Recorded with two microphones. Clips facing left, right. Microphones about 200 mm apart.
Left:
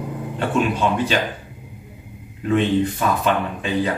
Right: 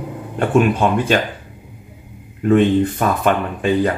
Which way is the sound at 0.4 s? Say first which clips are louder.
Right 5 dB; 50° right (ahead or behind).